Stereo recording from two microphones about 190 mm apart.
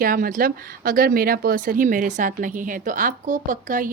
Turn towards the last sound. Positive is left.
turn(degrees=-45)  # may be behind; listen again after turning